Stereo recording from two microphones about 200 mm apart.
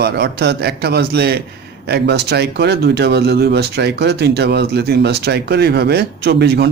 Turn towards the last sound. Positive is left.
turn(degrees=-55)  # may be behind; listen again after turning